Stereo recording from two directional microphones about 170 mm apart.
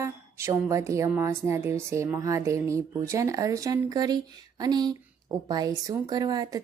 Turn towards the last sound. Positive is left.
turn(degrees=-20)  # may be behind; listen again after turning